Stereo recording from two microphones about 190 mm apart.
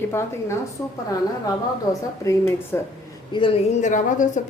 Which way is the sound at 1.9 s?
15° left (ahead or behind).